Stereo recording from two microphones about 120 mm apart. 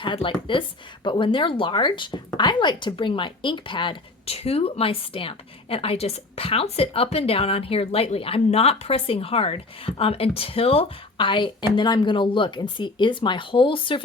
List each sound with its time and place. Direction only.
0.0 s speech: 45° left (ahead or behind)